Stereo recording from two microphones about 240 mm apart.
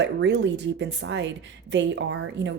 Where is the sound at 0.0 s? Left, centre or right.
Right.